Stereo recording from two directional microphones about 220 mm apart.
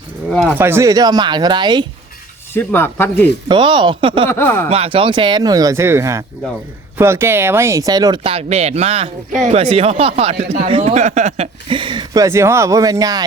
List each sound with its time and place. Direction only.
0.3 s speech: centre (ahead or behind)
0.6 s speech: 10° right (ahead or behind)
2.5 s speech: 10° left (ahead or behind)
3.5 s speech: 20° right (ahead or behind)
4.3 s speech: 10° left (ahead or behind)
4.7 s speech: 25° right (ahead or behind)